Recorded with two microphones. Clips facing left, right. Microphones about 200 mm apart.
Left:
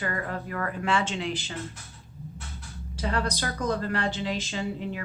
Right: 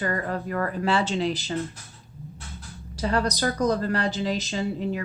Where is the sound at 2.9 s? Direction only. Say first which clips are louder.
Right 4 dB; 40° right (ahead or behind).